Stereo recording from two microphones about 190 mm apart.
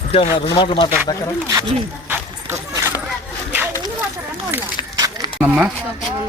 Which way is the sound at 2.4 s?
15° right (ahead or behind).